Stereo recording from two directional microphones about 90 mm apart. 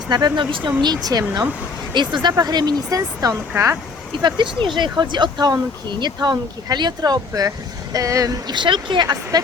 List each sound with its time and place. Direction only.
0.1 s speech: 50° right (ahead or behind)
1.9 s speech: 60° right (ahead or behind); by 3.3 s 40° right (ahead or behind)
4.2 s speech: 60° right (ahead or behind)
9.3 s speech: 50° right (ahead or behind)